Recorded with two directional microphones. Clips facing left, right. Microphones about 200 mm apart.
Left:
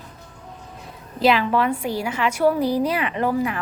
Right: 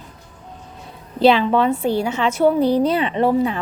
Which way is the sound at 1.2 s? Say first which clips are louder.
Right 4 dB; 25° right (ahead or behind).